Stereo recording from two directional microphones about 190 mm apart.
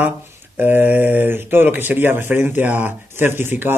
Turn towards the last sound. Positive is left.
turn(degrees=-10)  # may be behind; listen again after turning